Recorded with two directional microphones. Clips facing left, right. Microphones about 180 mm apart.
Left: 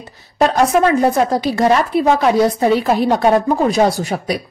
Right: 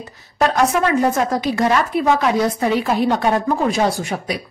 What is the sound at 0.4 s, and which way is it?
Speech, 35° left (ahead or behind).